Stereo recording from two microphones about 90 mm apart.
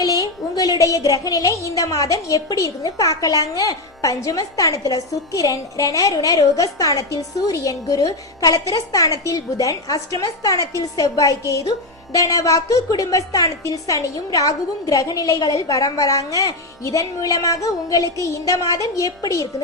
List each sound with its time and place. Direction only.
0.0 s a woman's voice: 45° left (ahead or behind)